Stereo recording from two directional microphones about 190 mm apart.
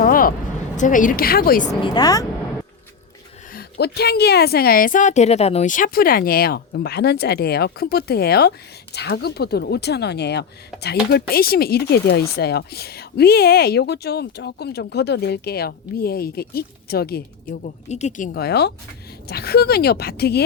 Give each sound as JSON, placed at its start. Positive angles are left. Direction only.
{"t": 0.0, "sound": "a sound", "side_deg": 50}
{"t": 0.8, "sound": "a woman's voice", "side_deg": 45}
{"t": 1.8, "sound": "a woman's voice", "side_deg": 20}
{"t": 3.5, "sound": "speech", "side_deg": 55}
{"t": 17.6, "sound": "speech", "side_deg": 35}
{"t": 18.3, "sound": "speech", "side_deg": 60}